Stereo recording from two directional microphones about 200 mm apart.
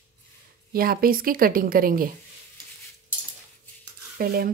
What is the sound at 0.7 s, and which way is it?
A woman's voice, 50° right (ahead or behind).